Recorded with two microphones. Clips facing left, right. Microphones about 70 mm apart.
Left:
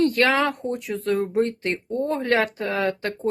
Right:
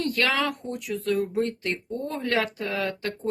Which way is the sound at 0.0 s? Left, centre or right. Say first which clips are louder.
Left 6 dB; left.